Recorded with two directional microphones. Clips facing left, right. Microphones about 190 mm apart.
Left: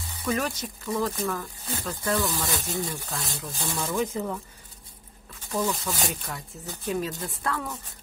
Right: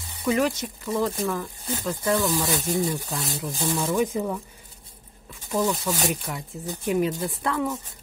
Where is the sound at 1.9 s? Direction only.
15° right (ahead or behind).